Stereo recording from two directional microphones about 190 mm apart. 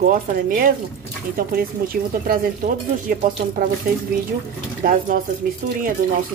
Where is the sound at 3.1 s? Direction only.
50° right (ahead or behind).